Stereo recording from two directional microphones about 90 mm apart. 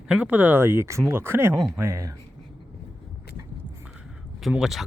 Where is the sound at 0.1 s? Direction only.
15° right (ahead or behind).